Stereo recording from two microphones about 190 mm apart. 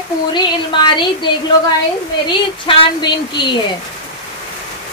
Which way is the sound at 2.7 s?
30° left (ahead or behind).